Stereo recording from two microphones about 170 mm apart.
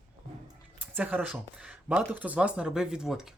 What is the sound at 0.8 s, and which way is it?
Speech, 10° right (ahead or behind).